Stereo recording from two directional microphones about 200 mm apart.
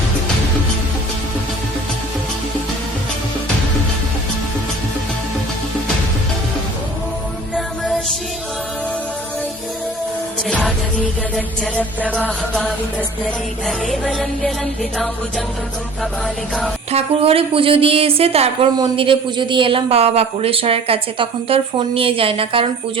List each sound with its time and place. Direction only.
10.5 s music: centre (ahead or behind)
13.7 s music: centre (ahead or behind)
16.9 s a woman's voice: 30° right (ahead or behind)